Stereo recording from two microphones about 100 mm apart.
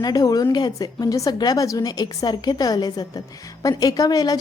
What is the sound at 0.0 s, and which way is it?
A woman's voice, 40° left (ahead or behind).